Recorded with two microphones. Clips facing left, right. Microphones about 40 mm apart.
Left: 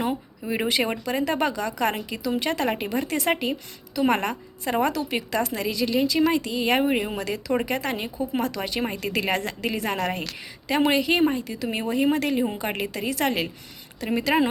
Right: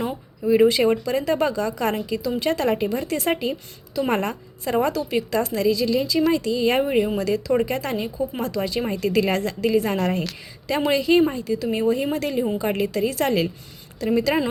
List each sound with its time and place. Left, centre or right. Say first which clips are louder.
0.0 s a woman's voice: right 2 dB; left
2.1 s a woman's voice: right 3 dB; left
3.2 s a woman's voice: right 1 dB; left
8.8 s a woman's voice: right 5 dB; left